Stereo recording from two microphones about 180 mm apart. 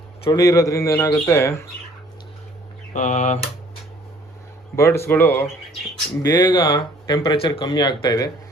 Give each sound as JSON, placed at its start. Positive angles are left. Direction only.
{"t": 0.3, "sound": "speech", "side_deg": 20}
{"t": 2.9, "sound": "typewriter", "side_deg": 40}
{"t": 4.8, "sound": "speech", "side_deg": 15}
{"t": 6.2, "sound": "speech", "side_deg": 25}